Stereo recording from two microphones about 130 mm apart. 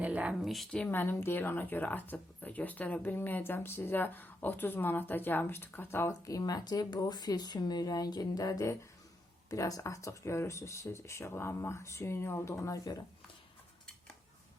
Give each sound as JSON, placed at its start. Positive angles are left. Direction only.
{"t": 0.0, "sound": "speech", "side_deg": -10}